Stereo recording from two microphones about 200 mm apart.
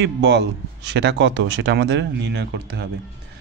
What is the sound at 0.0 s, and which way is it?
A man's voice, 60° right (ahead or behind).